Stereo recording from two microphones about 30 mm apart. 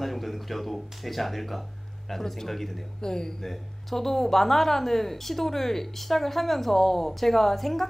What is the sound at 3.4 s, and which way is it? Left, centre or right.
Speech, centre.